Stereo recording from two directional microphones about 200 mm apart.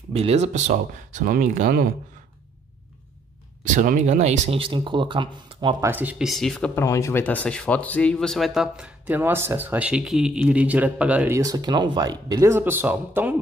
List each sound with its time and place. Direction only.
0.1 s speech: 30° right (ahead or behind)
3.6 s speech: 40° right (ahead or behind); by 5.9 s 25° right (ahead or behind)
5.9 s speech: 10° right (ahead or behind)
6.7 s speech: 15° left (ahead or behind); by 13.4 s 10° right (ahead or behind)